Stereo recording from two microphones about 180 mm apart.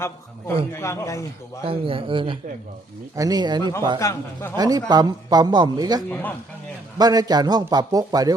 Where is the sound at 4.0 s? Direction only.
15° left (ahead or behind).